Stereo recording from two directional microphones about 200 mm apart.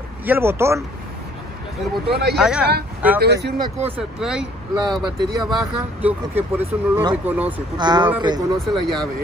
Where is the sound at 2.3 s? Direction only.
5° right (ahead or behind).